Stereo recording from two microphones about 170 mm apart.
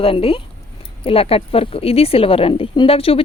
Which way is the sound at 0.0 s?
35° left (ahead or behind).